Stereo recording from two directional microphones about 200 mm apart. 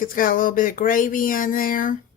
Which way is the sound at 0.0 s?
45° left (ahead or behind).